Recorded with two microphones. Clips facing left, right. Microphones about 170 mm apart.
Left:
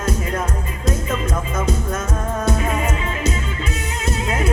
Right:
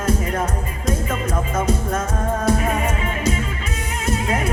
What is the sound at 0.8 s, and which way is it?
Music, 30° right (ahead or behind).